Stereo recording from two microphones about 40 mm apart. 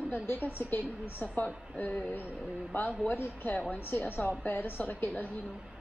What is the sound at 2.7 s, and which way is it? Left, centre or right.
Speech, left.